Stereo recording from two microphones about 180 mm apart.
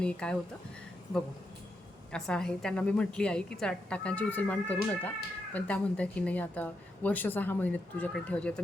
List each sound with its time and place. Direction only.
0.0 s a woman's voice: 5° left (ahead or behind)
2.1 s a woman's voice: 5° left (ahead or behind)